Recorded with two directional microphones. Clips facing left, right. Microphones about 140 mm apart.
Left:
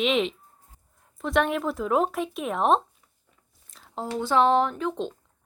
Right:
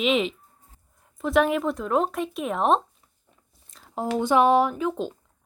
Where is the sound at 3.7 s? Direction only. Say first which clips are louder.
Right 1 dB; centre (ahead or behind).